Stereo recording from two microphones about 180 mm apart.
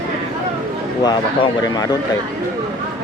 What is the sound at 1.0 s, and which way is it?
Speech, 25° left (ahead or behind).